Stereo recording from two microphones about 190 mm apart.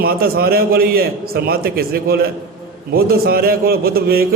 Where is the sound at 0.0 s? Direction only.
50° right (ahead or behind).